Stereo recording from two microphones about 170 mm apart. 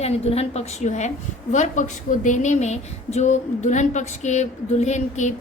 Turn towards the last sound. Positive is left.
turn(degrees=45)  # may be behind; listen again after turning